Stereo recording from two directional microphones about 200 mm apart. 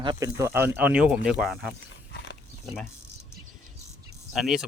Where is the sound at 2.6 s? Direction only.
Centre (ahead or behind).